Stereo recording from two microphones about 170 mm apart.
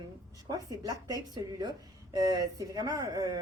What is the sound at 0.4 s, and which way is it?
Speech, 20° right (ahead or behind).